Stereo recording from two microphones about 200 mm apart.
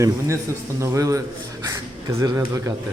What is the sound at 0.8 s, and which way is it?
Speech, 15° right (ahead or behind).